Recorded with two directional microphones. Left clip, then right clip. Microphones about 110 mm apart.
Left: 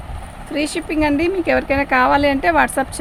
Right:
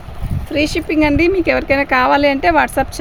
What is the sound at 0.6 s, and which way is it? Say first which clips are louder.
Speech: right 5 dB; 90° right.